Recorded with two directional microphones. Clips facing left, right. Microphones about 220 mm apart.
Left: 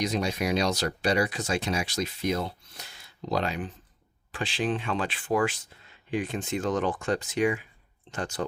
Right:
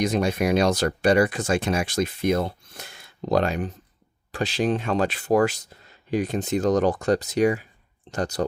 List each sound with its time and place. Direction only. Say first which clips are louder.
0.0 s speech: right 5 dB; 50° right (ahead or behind)